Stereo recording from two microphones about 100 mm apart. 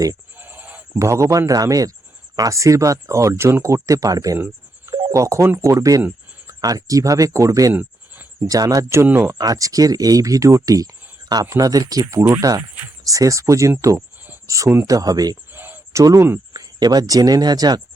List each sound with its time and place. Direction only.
0.3 s a sound: 20° right (ahead or behind)
0.9 s speech: 30° right (ahead or behind)
4.9 s telephone dialing: 50° right (ahead or behind)
5.1 s speech: 30° right (ahead or behind)
7.7 s a sound: 15° right (ahead or behind)
8.4 s speech: 35° right (ahead or behind)
9.4 s speech: 35° right (ahead or behind)
15.5 s a sound: 20° right (ahead or behind)
15.9 s speech: 30° right (ahead or behind)
16.5 s speech: 40° right (ahead or behind)